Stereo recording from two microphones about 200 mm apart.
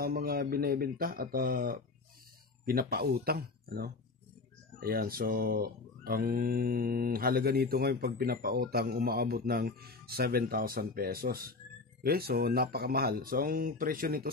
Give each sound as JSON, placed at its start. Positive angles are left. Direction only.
{"t": 0.0, "sound": "speech", "side_deg": -50}